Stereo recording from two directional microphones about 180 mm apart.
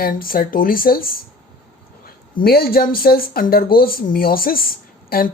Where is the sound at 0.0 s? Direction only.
55° left (ahead or behind).